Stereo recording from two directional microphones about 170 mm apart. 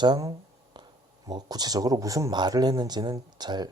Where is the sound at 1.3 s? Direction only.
25° right (ahead or behind).